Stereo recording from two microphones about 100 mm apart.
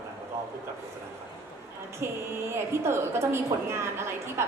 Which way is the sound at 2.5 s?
25° right (ahead or behind).